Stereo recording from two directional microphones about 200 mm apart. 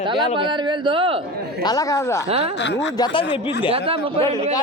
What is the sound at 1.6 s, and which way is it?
Speech, 15° left (ahead or behind).